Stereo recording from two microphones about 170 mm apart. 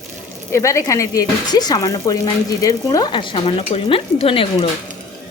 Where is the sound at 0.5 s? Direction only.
15° left (ahead or behind).